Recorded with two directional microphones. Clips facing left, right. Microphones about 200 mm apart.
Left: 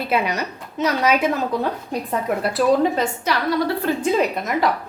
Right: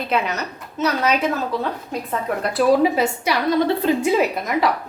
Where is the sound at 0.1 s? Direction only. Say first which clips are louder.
Left 1 dB; 10° left (ahead or behind).